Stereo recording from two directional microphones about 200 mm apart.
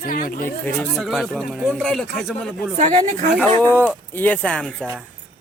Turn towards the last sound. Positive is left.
turn(degrees=5)  # may be behind; listen again after turning